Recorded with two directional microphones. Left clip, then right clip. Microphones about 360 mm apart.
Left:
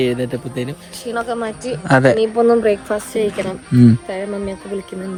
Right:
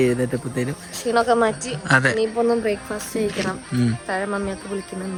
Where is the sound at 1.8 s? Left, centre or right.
Centre.